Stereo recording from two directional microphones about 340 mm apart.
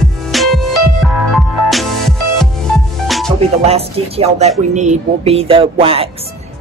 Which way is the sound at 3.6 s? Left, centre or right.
Centre.